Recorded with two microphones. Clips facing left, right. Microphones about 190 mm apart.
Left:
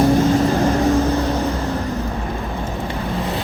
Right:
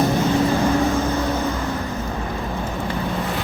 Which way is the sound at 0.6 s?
35° left (ahead or behind).